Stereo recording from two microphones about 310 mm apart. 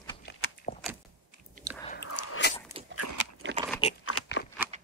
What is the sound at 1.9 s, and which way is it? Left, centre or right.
Biting, left.